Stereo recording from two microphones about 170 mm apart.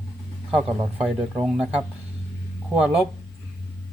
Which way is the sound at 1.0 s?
5° right (ahead or behind).